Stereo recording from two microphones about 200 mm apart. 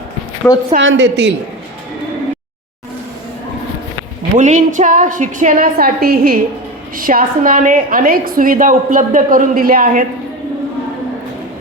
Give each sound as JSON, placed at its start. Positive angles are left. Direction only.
{"t": 0.4, "sound": "a woman's voice", "side_deg": 0}
{"t": 0.8, "sound": "a woman's voice", "side_deg": -70}
{"t": 4.4, "sound": "a woman's voice", "side_deg": -40}